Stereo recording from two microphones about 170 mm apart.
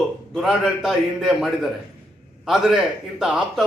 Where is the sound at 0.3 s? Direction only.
Centre (ahead or behind).